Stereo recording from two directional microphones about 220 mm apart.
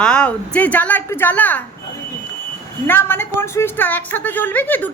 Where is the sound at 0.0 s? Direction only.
5° left (ahead or behind).